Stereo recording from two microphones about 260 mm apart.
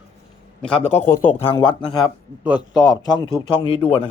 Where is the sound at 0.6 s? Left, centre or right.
Centre.